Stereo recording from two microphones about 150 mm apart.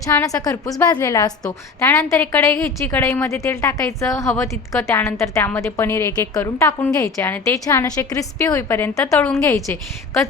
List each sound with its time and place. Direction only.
0.0 s a woman's voice: 20° left (ahead or behind)